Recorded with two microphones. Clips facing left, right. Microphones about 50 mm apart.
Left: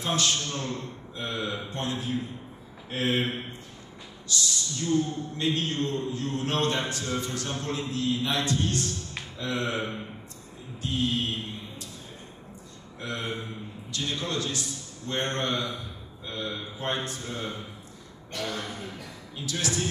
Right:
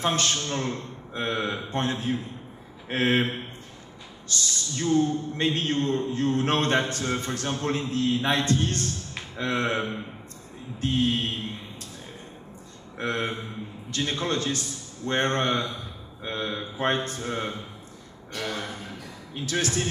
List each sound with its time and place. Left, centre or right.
0.0 s a man's voice: right
13.0 s a man's voice: right